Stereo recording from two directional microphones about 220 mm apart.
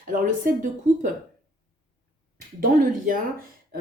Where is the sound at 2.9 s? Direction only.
40° right (ahead or behind).